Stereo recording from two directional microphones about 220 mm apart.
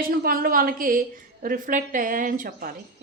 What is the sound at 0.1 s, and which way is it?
A woman's voice, 40° right (ahead or behind).